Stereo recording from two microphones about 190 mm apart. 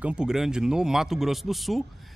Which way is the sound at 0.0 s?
5° right (ahead or behind).